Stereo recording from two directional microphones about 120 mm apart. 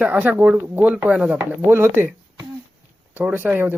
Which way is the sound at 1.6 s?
20° right (ahead or behind).